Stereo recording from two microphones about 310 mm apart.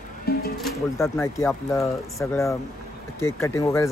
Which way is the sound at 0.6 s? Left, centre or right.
Centre.